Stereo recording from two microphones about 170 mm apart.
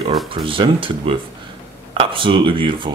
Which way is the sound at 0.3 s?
30° right (ahead or behind).